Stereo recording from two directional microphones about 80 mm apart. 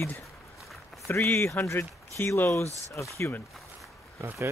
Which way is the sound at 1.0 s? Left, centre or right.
Left.